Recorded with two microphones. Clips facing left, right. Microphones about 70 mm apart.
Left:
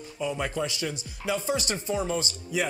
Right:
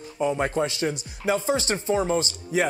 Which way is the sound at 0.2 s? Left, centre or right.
Right.